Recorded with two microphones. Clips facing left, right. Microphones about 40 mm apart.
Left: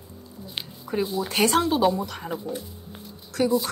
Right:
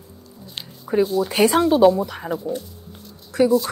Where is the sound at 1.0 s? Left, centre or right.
Centre.